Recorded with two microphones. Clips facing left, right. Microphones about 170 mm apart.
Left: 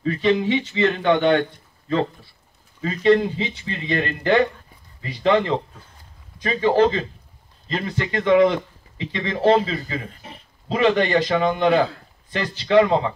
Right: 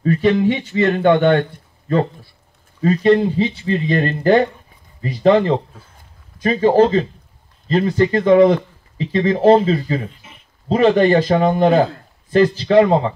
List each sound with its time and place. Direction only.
0.0 s a man's voice: 45° right (ahead or behind)
2.8 s speech: 40° right (ahead or behind)
10.1 s a sound: 35° left (ahead or behind)
10.7 s speech: 35° right (ahead or behind)